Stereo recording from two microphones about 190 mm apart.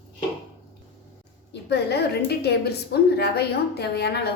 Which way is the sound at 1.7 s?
60° left (ahead or behind).